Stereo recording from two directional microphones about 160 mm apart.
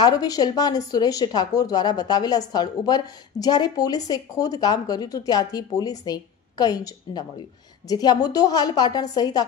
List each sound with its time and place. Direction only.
0.0 s speech: 25° left (ahead or behind)